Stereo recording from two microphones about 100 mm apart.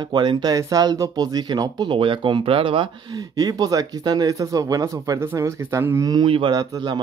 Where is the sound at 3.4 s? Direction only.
40° right (ahead or behind).